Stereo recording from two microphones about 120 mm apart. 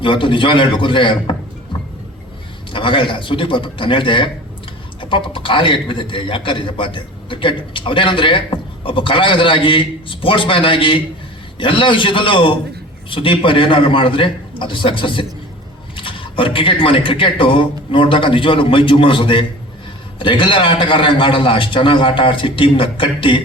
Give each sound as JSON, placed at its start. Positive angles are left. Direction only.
{"t": 0.0, "sound": "a man's voice", "side_deg": 45}
{"t": 2.7, "sound": "a man's voice", "side_deg": 45}